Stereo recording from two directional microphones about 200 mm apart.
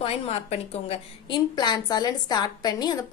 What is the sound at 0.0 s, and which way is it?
A woman's voice, 30° left (ahead or behind).